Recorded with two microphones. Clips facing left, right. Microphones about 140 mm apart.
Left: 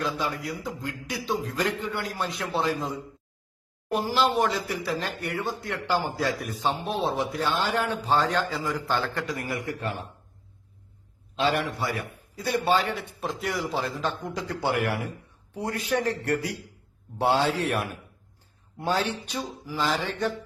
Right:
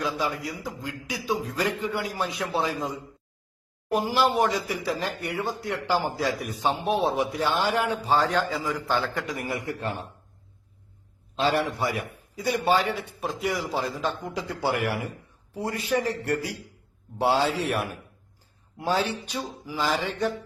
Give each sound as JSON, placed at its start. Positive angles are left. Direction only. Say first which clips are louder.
{"t": 0.0, "sound": "a man's voice", "louder": "right 1 dB", "side_deg": -5}
{"t": 3.9, "sound": "a man's voice", "louder": "right 1 dB", "side_deg": -10}
{"t": 9.8, "sound": "speech", "louder": "right 1 dB", "side_deg": -35}
{"t": 11.3, "sound": "a man's voice", "louder": "right 1 dB", "side_deg": -40}
{"t": 11.8, "sound": "a man's voice", "louder": "right 2 dB", "side_deg": -15}